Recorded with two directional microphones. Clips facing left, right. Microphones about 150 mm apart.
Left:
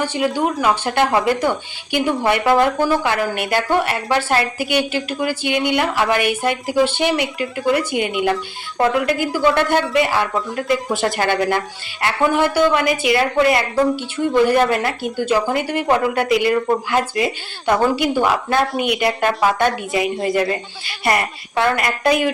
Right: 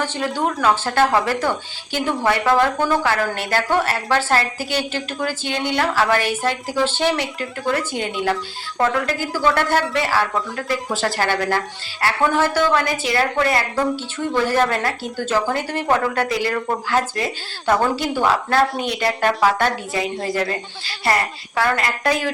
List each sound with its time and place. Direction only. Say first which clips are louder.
0.0 s a woman's voice: left 3 dB; 10° left (ahead or behind)